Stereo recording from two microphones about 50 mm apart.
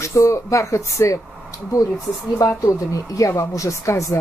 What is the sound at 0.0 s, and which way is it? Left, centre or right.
Speech, left.